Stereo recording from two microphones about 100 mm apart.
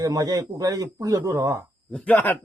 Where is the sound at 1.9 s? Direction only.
15° left (ahead or behind).